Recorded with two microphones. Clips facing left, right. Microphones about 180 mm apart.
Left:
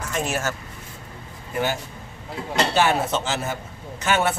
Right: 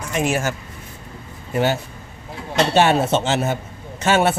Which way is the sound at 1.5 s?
20° right (ahead or behind).